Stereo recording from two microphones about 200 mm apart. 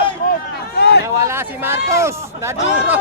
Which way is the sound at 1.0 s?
15° right (ahead or behind).